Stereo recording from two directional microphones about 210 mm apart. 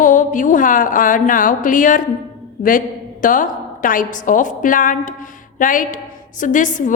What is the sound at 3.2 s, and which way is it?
A woman's voice, 40° left (ahead or behind).